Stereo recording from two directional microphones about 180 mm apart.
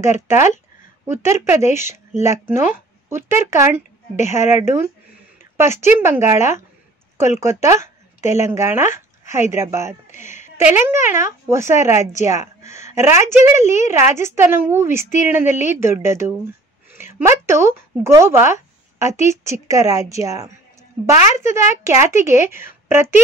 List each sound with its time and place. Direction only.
0.0 s speech: 15° right (ahead or behind)
5.4 s a sound: 15° right (ahead or behind)
6.0 s speech: 15° right (ahead or behind)